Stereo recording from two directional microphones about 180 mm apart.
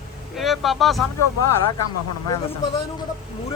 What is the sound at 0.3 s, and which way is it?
Speech, centre (ahead or behind).